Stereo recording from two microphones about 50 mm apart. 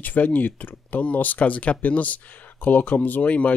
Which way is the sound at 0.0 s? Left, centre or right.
Left.